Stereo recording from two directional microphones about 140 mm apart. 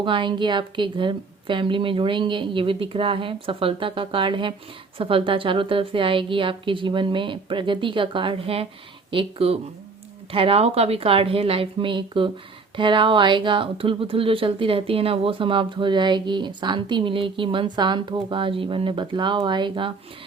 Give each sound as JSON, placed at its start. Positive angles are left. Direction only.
{"t": 0.0, "sound": "a woman's voice", "side_deg": -35}